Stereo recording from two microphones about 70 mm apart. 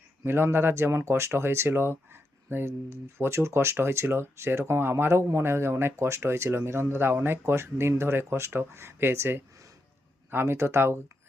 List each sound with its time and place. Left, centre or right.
0.3 s speech: right